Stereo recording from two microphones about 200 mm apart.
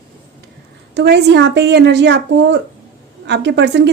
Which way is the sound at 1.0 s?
55° right (ahead or behind).